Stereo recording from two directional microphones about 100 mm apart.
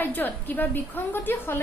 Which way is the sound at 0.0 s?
20° left (ahead or behind).